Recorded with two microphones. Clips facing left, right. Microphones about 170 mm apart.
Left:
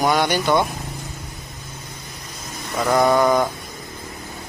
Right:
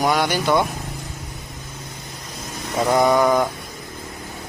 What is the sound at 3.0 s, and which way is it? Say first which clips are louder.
Speech: left 1 dB; 5° right (ahead or behind).